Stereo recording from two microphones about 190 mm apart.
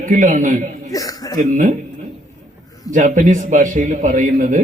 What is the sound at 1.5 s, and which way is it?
Speech, 45° right (ahead or behind).